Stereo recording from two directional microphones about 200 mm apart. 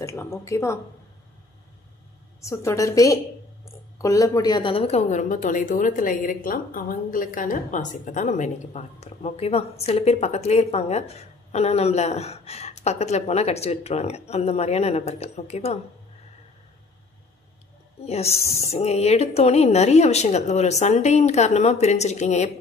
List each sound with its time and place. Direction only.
0.0 s speech: 15° left (ahead or behind)
2.4 s a woman's voice: 15° left (ahead or behind); by 15.8 s 30° left (ahead or behind)
18.0 s a woman's voice: 30° left (ahead or behind)